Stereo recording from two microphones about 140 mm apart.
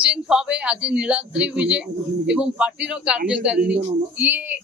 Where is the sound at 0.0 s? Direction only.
5° right (ahead or behind).